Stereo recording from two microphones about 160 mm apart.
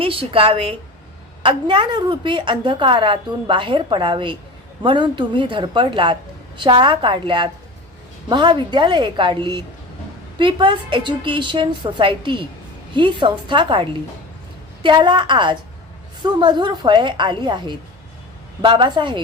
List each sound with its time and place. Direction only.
0.0 s a woman's voice: 35° right (ahead or behind)